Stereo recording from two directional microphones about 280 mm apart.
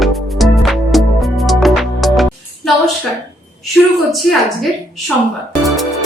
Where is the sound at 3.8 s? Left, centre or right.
Centre.